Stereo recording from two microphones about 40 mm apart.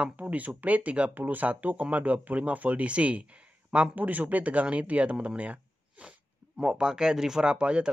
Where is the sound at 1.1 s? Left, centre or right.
Right.